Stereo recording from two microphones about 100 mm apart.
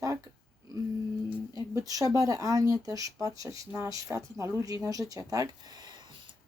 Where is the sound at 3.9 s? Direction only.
35° right (ahead or behind).